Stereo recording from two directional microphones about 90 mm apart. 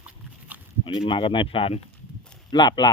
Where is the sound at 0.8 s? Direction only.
75° left (ahead or behind); by 1.7 s 90° left.